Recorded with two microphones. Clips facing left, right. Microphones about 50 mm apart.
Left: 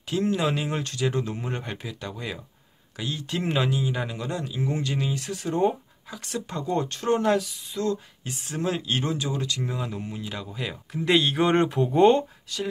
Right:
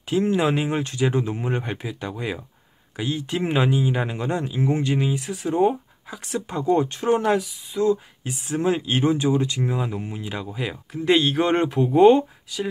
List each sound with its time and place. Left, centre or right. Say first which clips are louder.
0.1 s speech: right 4 dB; right
10.9 s speech: right 3 dB; centre